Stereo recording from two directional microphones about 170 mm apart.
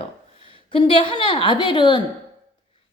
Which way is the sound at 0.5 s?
30° left (ahead or behind).